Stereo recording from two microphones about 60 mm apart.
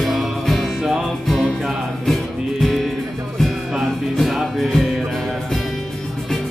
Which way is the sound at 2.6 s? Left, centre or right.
Centre.